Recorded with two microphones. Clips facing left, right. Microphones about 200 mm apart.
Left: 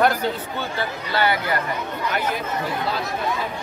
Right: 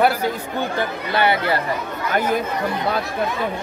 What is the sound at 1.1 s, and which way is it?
Speech, 25° right (ahead or behind).